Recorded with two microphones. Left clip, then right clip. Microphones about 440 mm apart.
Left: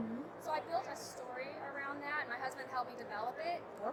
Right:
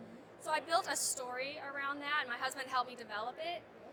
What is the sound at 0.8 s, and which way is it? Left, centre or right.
Speech, right.